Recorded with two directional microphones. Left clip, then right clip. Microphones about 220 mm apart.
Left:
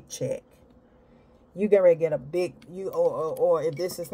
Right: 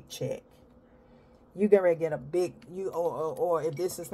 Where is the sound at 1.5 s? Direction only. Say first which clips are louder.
Left 4 dB; 20° right (ahead or behind).